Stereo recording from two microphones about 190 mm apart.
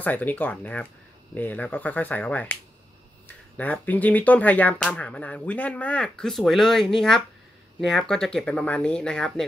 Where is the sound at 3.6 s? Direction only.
10° left (ahead or behind).